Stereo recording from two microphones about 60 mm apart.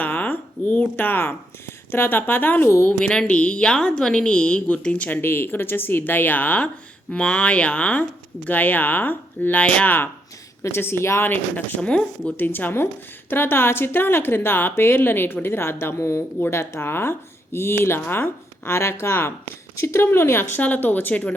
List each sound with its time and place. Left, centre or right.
0.0 s speech: left
2.6 s speech: left
3.0 s a woman's voice: centre
10.6 s speech: left
11.3 s a woman's voice: left
11.8 s speech: centre
12.4 s a woman's voice: left
20.6 s a woman's voice: left